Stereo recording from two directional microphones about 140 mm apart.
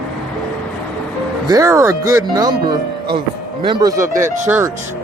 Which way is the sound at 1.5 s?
25° right (ahead or behind).